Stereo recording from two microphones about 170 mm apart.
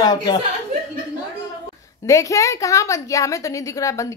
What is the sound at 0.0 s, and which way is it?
Speech, 25° left (ahead or behind).